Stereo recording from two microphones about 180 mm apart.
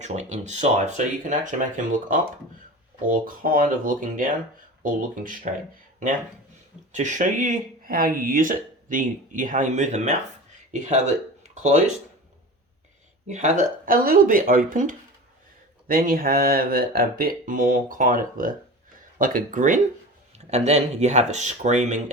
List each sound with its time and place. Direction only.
0.0 s speech: 40° right (ahead or behind)
6.9 s speech: 45° right (ahead or behind)
13.2 s speech: 40° right (ahead or behind)